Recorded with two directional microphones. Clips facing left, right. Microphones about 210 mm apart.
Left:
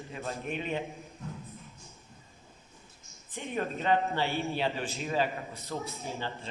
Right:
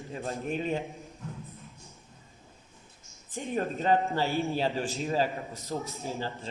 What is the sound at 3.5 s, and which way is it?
A man's voice, 40° right (ahead or behind).